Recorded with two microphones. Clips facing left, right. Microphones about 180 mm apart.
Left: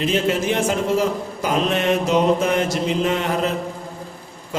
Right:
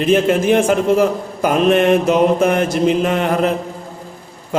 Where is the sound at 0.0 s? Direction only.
55° right (ahead or behind).